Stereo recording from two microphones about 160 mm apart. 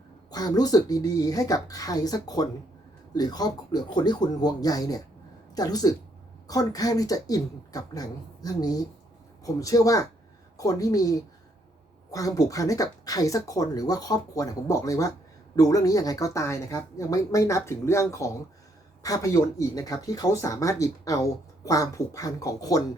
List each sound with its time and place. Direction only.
0.3 s speech: 25° left (ahead or behind)